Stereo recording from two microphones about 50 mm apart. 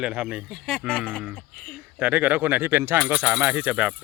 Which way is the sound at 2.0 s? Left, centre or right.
Right.